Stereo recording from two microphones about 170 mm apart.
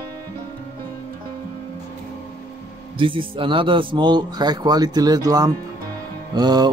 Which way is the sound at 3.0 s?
30° right (ahead or behind).